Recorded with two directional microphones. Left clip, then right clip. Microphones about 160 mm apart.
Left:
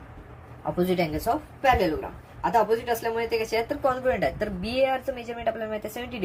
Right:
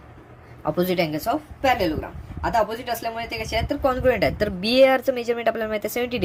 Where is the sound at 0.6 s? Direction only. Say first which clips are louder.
Right 3 dB; 50° right (ahead or behind).